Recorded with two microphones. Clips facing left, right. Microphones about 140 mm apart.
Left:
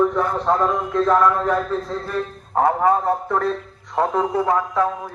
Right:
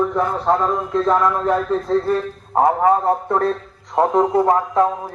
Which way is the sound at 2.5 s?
25° right (ahead or behind).